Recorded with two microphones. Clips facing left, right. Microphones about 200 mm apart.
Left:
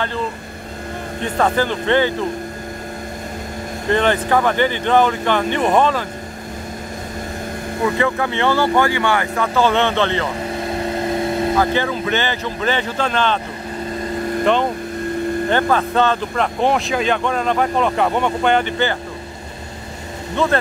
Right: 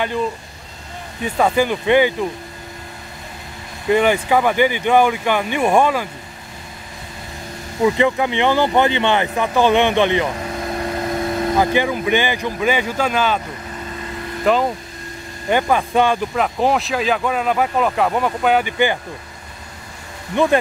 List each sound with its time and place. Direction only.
1.2 s speech: 10° right (ahead or behind)
3.9 s speech: 10° right (ahead or behind)
7.8 s speech: 15° right (ahead or behind)
11.1 s vehicle: 25° left (ahead or behind)
11.5 s speech: 15° right (ahead or behind)
14.4 s speech: 5° right (ahead or behind)
20.4 s speech: 15° right (ahead or behind)